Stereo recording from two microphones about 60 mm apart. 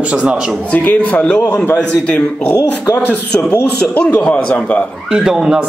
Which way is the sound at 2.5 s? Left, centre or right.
Left.